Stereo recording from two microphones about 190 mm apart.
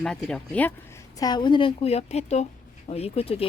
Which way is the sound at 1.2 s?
20° left (ahead or behind).